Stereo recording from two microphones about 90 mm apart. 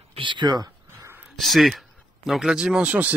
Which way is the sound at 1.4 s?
Centre (ahead or behind).